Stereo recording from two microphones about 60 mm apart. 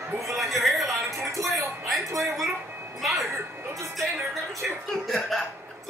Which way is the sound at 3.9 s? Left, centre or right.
Centre.